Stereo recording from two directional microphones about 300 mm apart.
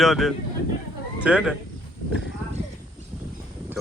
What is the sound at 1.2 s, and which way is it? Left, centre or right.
Speech, centre.